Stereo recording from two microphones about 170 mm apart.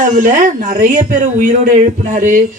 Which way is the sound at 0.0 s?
50° right (ahead or behind).